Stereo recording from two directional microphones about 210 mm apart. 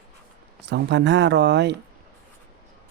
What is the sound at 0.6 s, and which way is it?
Speech, 55° right (ahead or behind).